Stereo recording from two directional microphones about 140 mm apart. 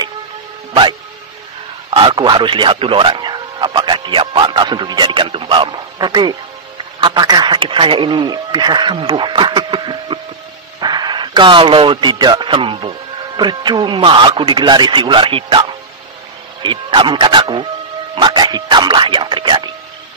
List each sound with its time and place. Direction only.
1.9 s a man's voice: 40° right (ahead or behind)
16.6 s a man's voice: 35° right (ahead or behind)
18.1 s music: 35° right (ahead or behind)